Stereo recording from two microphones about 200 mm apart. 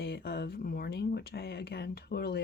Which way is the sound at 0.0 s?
50° left (ahead or behind).